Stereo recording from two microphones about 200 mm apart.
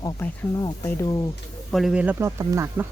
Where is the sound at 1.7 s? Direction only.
Centre (ahead or behind).